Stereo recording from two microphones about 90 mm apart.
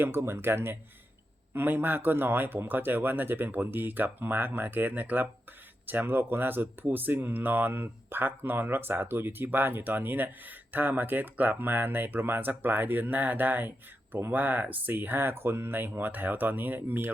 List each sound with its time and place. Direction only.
0.0 s speech: 30° right (ahead or behind)